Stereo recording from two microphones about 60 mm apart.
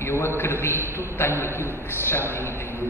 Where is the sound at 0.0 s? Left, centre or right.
Left.